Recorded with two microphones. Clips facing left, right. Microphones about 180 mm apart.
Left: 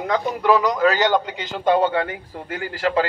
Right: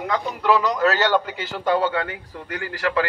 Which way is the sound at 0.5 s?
10° left (ahead or behind).